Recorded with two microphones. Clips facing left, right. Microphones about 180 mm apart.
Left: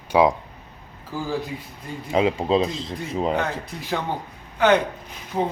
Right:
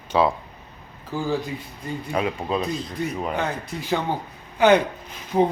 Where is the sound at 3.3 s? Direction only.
Centre (ahead or behind).